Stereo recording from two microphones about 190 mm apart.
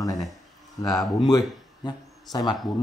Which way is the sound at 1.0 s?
Centre (ahead or behind).